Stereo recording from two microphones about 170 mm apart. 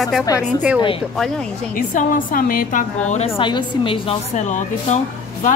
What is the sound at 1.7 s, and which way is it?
A woman's voice, 55° left (ahead or behind).